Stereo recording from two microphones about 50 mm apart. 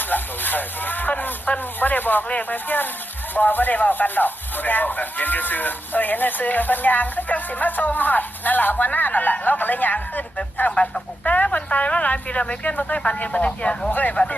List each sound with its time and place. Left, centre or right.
0.0 s a sound: left
2.2 s a woman's voice: left
13.9 s speech: left